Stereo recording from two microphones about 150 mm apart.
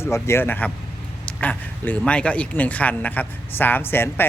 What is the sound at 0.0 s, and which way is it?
Speech, 15° left (ahead or behind).